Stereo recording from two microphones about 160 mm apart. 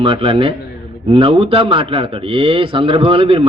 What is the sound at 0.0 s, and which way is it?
A man's voice, 30° right (ahead or behind).